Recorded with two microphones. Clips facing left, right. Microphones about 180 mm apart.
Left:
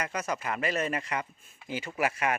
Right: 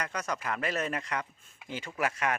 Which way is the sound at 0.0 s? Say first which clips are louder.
Left 2 dB; 5° left (ahead or behind).